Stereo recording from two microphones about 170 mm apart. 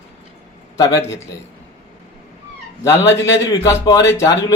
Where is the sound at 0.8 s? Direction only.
20° left (ahead or behind).